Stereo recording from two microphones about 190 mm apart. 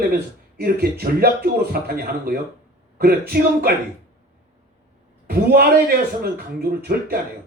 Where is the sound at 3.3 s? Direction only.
50° right (ahead or behind).